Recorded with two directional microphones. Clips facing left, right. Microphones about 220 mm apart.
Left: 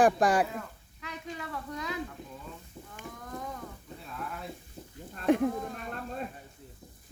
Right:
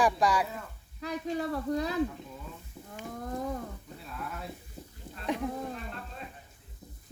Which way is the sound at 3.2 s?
35° right (ahead or behind).